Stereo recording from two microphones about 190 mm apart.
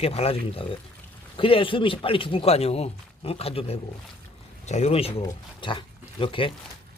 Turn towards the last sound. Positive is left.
turn(degrees=30)  # may be behind; listen again after turning